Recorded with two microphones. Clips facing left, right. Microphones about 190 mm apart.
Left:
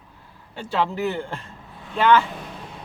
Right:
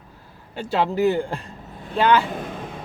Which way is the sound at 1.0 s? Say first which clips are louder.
Right 6 dB; 15° right (ahead or behind).